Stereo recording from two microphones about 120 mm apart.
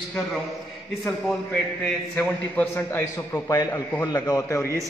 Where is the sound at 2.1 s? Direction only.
10° left (ahead or behind); by 4.7 s 30° left (ahead or behind).